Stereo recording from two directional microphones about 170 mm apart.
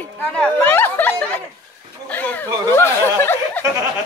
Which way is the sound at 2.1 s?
10° left (ahead or behind).